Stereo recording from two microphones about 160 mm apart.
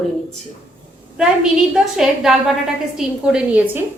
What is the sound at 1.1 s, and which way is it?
A woman's voice, 5° right (ahead or behind).